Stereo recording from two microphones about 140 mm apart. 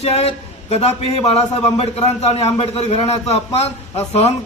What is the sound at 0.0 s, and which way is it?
A man's voice, 45° left (ahead or behind).